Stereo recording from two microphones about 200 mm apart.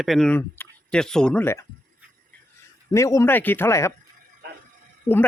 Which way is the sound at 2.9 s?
15° left (ahead or behind).